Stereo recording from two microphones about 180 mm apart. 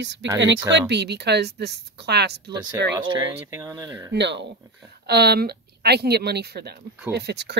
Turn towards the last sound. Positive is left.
turn(degrees=-70)  # may be behind; listen again after turning